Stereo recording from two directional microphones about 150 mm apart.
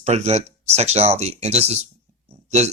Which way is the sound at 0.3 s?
45° right (ahead or behind).